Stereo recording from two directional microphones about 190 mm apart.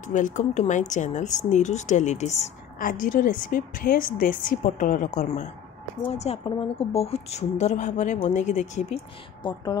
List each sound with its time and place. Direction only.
0.0 s a woman's voice: 40° left (ahead or behind)
2.9 s a woman's voice: 45° left (ahead or behind)
9.4 s speech: 20° left (ahead or behind)